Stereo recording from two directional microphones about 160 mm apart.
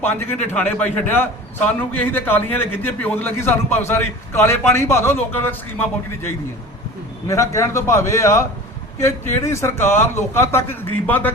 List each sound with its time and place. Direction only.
0.0 s a man's voice: 15° left (ahead or behind)
7.3 s a man's voice: 20° left (ahead or behind)